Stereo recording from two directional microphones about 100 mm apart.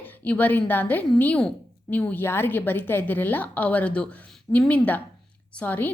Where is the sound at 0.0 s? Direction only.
15° left (ahead or behind).